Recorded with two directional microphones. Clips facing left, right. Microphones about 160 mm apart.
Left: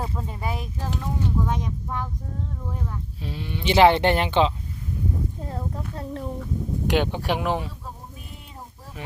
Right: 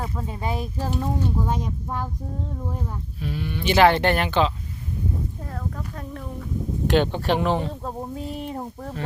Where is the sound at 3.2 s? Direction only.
25° left (ahead or behind).